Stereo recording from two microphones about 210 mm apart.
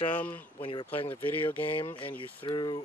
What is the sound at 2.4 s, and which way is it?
Speech, 20° left (ahead or behind).